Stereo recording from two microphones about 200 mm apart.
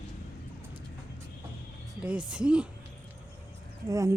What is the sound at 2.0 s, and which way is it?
Speech, 5° right (ahead or behind).